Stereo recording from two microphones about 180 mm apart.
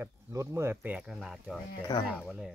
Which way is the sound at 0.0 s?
15° right (ahead or behind).